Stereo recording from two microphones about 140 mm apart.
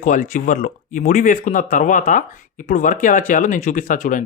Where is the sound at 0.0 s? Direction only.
65° left (ahead or behind).